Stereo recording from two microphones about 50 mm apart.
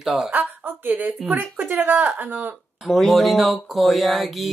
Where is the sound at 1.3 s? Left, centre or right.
Right.